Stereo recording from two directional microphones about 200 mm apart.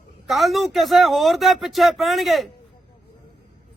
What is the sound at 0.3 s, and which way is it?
Speech, centre (ahead or behind).